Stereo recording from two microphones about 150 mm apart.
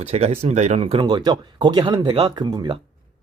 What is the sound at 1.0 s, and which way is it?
Speech, 30° right (ahead or behind).